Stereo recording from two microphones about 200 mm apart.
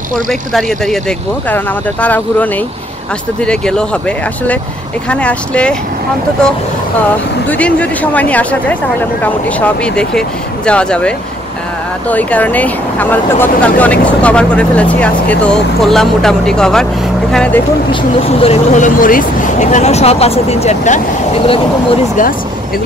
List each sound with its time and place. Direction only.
0.3 s speech: centre (ahead or behind)
5.1 s speech: 5° left (ahead or behind)
7.0 s speech: 5° left (ahead or behind)
18.4 s speech: 35° left (ahead or behind)